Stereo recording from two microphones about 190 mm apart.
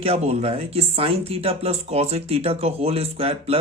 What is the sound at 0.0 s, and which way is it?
Speech, 30° right (ahead or behind).